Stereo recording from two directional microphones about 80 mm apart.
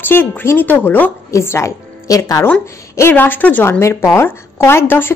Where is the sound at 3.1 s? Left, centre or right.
Left.